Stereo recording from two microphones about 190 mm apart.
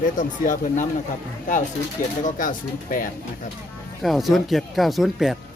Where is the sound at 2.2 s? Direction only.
45° left (ahead or behind).